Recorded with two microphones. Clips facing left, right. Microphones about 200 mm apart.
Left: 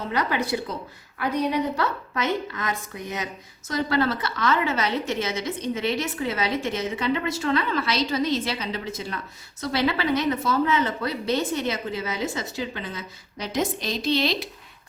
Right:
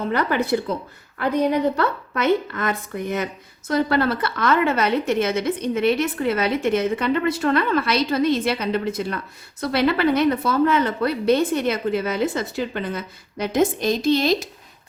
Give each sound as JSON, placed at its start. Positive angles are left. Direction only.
{"t": 0.1, "sound": "a woman's voice", "side_deg": -55}